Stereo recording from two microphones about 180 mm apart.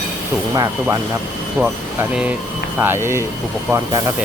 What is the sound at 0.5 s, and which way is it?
Speech, 20° right (ahead or behind).